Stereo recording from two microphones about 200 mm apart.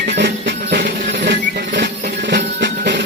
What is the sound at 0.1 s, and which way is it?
Music, 55° right (ahead or behind).